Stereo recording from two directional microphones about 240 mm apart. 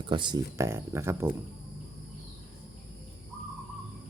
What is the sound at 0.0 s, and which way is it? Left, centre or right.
Speech, centre.